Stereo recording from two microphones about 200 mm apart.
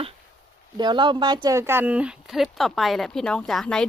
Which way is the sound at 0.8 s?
20° right (ahead or behind).